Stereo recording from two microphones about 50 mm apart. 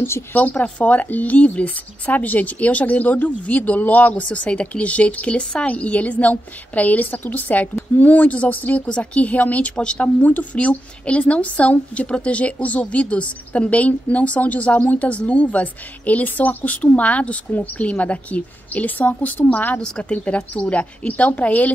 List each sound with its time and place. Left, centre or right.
0.3 s a woman's voice: left
9.8 s a woman's voice: left
19.8 s a woman's voice: left